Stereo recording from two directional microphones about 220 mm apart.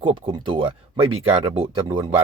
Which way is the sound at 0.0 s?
20° right (ahead or behind).